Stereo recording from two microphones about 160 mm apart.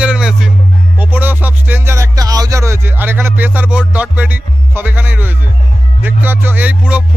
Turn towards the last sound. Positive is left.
turn(degrees=-10)  # may be behind; listen again after turning